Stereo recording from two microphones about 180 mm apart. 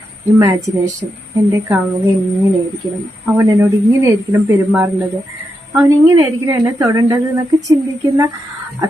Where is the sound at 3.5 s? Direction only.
15° right (ahead or behind).